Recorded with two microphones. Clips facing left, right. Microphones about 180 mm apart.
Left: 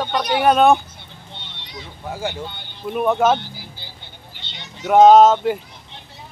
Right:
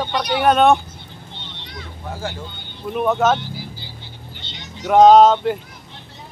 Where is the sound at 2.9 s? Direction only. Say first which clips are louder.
Left 1 dB; 5° left (ahead or behind).